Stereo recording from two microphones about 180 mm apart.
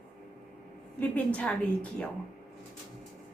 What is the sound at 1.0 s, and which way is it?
Speech, 10° left (ahead or behind).